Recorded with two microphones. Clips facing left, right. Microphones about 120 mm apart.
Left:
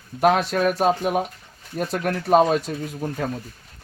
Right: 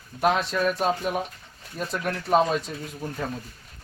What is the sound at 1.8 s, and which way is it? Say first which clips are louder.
Speech: left 5 dB; 45° left (ahead or behind).